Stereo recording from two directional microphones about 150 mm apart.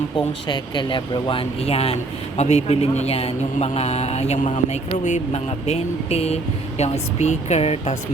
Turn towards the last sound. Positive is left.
turn(degrees=45)  # may be behind; listen again after turning